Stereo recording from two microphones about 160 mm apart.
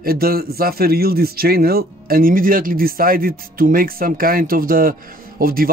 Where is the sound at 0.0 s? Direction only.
70° right (ahead or behind).